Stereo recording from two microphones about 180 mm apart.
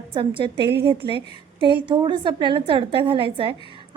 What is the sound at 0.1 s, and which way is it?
A woman's voice, 30° right (ahead or behind).